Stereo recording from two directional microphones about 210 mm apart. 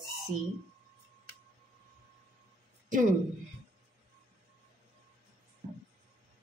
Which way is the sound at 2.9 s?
40° right (ahead or behind).